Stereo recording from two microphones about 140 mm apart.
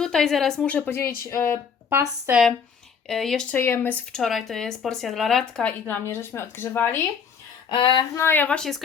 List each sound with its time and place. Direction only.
0.0 s a woman's voice: 5° left (ahead or behind)
1.9 s speech: 15° right (ahead or behind)
3.1 s a woman's voice: centre (ahead or behind)
3.5 s speech: 15° left (ahead or behind)
7.7 s a sound: 35° left (ahead or behind)
8.1 s speech: 15° left (ahead or behind)